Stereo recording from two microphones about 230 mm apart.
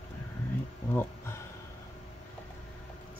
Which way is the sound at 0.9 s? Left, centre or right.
Centre.